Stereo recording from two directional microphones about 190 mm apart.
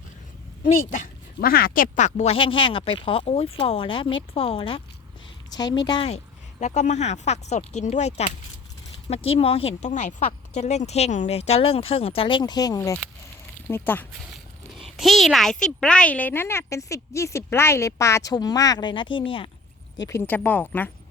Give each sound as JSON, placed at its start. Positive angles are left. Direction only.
{"t": 0.6, "sound": "speech", "side_deg": 40}
{"t": 6.6, "sound": "speech", "side_deg": 40}
{"t": 14.7, "sound": "speech", "side_deg": 0}
{"t": 20.1, "sound": "speech", "side_deg": 10}